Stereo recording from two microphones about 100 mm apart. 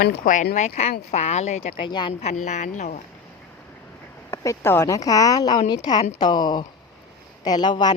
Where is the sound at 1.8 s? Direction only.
50° left (ahead or behind).